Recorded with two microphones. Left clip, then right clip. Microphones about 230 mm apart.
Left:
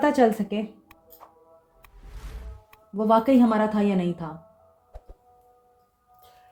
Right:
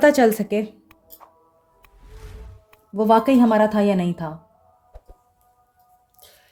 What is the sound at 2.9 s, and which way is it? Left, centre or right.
Speech, right.